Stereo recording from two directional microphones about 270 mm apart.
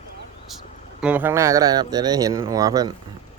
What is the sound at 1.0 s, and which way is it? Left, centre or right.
Speech, centre.